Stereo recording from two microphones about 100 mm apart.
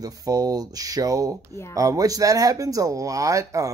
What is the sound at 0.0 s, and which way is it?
Speech, 40° right (ahead or behind).